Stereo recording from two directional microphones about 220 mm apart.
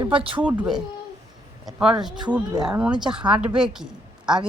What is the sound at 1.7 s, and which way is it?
A woman's voice, 5° right (ahead or behind).